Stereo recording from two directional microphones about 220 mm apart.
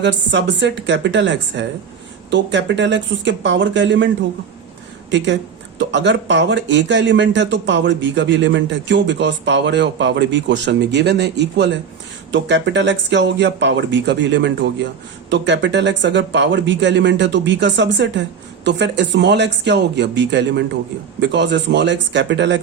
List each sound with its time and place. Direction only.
0.0 s speech: 55° right (ahead or behind)
5.1 s speech: 55° right (ahead or behind)